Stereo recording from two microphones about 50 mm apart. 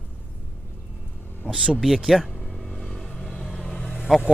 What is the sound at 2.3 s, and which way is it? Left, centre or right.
Vehicle, centre.